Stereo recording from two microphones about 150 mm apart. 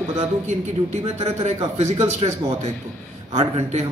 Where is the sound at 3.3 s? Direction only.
45° right (ahead or behind).